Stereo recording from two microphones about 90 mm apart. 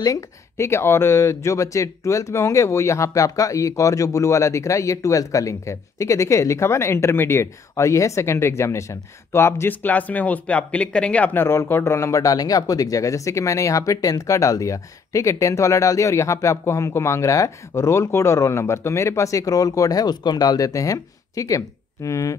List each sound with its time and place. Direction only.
0.0 s speech: 35° left (ahead or behind)